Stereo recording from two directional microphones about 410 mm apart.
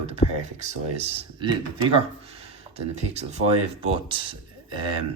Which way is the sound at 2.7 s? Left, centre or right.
Centre.